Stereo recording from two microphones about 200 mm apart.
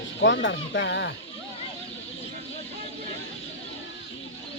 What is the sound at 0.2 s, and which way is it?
Speech, 65° left (ahead or behind).